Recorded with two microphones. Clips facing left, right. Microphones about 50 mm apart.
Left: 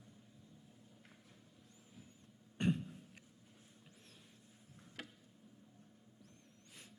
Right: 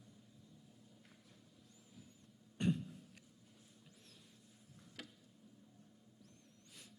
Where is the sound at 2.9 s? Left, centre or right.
Left.